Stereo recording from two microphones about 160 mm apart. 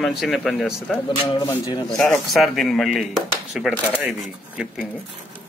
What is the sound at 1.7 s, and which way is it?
Speech, 25° left (ahead or behind).